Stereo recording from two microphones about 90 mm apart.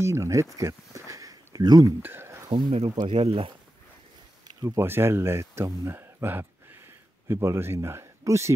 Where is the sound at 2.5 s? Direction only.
60° right (ahead or behind); by 3.5 s 85° right.